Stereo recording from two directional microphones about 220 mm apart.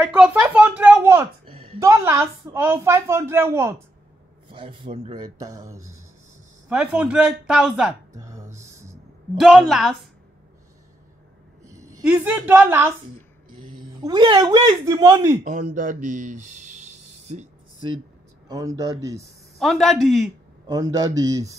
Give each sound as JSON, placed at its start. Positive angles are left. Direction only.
{"t": 0.0, "sound": "a sound", "side_deg": -5}
{"t": 1.5, "sound": "a woman's voice", "side_deg": -25}
{"t": 4.5, "sound": "speech", "side_deg": -25}
{"t": 8.2, "sound": "a sound", "side_deg": -15}
{"t": 9.4, "sound": "speech", "side_deg": 0}
{"t": 11.6, "sound": "a woman's voice", "side_deg": -15}
{"t": 13.7, "sound": "speech", "side_deg": -20}
{"t": 15.7, "sound": "speech", "side_deg": -35}
{"t": 17.3, "sound": "a sound", "side_deg": -30}
{"t": 18.5, "sound": "a man's voice", "side_deg": -15}
{"t": 19.6, "sound": "speech", "side_deg": 0}
{"t": 20.6, "sound": "a man's voice", "side_deg": -15}